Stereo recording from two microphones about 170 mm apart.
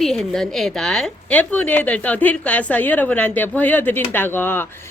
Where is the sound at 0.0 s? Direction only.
Centre (ahead or behind).